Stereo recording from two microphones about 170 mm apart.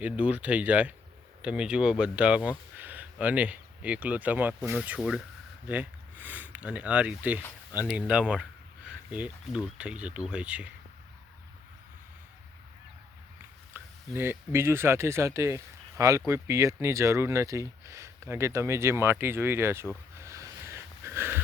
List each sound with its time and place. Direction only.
0.0 s speech: 10° right (ahead or behind)
13.7 s speech: 15° right (ahead or behind)
20.1 s a sound: 15° right (ahead or behind)